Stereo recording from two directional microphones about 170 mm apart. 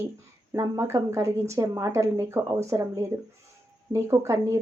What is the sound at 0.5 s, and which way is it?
Speech, 15° right (ahead or behind).